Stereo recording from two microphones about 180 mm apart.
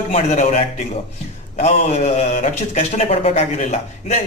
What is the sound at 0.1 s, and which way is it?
Speech, 40° left (ahead or behind).